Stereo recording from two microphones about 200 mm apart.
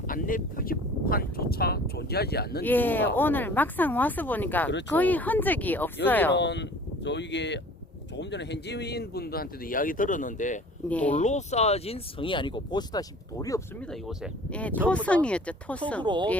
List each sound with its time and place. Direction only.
0.1 s speech: 45° left (ahead or behind)
2.6 s speech: 10° left (ahead or behind)
6.3 s speech: 60° left (ahead or behind); by 10.6 s 40° left (ahead or behind)
10.8 s speech: 5° left (ahead or behind)
11.2 s speech: 35° left (ahead or behind); by 13.6 s 20° left (ahead or behind)
13.9 s speech: centre (ahead or behind)